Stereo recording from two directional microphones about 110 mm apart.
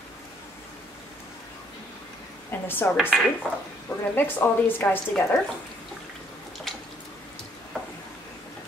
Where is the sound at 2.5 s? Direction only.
20° left (ahead or behind).